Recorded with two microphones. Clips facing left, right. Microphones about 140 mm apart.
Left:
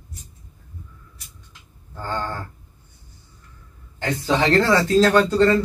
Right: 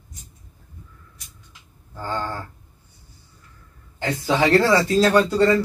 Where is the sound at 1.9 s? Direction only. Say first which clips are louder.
Even; 10° right (ahead or behind).